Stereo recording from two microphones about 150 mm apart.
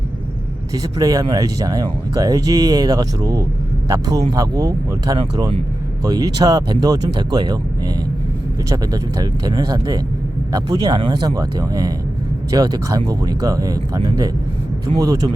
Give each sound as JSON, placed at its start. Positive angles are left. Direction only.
{"t": 0.7, "sound": "speech", "side_deg": -25}
{"t": 8.7, "sound": "speech", "side_deg": -25}